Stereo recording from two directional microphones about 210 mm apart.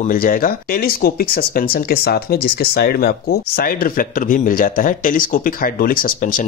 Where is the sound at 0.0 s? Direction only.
40° left (ahead or behind).